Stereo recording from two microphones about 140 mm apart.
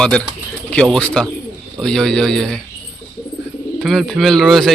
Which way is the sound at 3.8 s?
Centre (ahead or behind).